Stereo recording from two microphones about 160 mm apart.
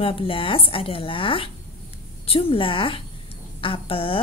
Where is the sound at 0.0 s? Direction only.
35° left (ahead or behind).